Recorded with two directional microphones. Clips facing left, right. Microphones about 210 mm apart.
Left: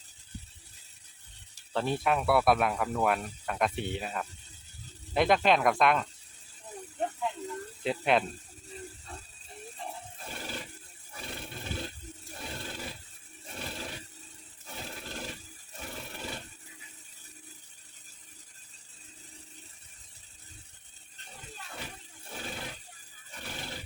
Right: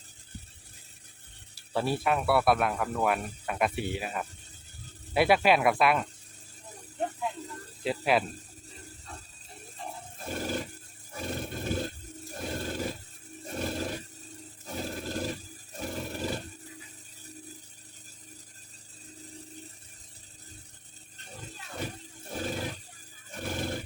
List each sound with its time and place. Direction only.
1.5 s speech: 5° right (ahead or behind)
7.9 s speech: 5° right (ahead or behind)
10.3 s roar: 45° right (ahead or behind)
21.8 s roar: 40° right (ahead or behind)
23.3 s a sound: 45° right (ahead or behind)